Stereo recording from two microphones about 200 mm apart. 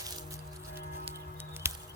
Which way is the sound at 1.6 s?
10° right (ahead or behind).